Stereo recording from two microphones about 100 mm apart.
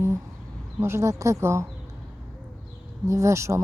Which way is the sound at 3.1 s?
30° right (ahead or behind).